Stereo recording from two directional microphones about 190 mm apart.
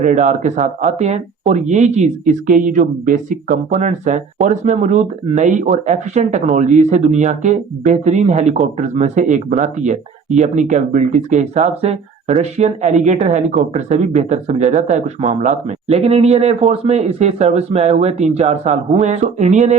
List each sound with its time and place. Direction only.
0.0 s speech: 40° right (ahead or behind)